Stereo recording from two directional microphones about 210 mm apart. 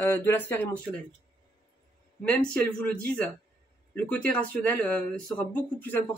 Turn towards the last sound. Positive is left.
turn(degrees=10)  # may be behind; listen again after turning